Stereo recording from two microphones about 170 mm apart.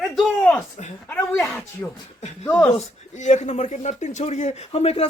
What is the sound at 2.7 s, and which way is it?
Speech, 45° left (ahead or behind).